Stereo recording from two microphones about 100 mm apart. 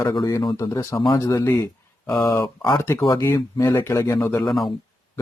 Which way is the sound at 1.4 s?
25° left (ahead or behind).